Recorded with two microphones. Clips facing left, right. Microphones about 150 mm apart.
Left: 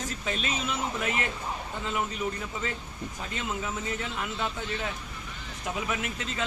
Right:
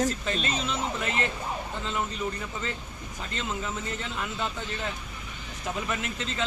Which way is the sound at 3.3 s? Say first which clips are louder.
Right 1 dB; 10° left (ahead or behind).